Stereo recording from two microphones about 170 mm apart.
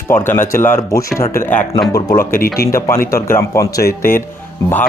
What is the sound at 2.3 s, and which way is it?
Speech, 60° left (ahead or behind).